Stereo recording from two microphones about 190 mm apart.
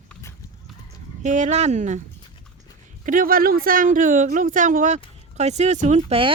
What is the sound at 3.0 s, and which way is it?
Speech, 45° right (ahead or behind).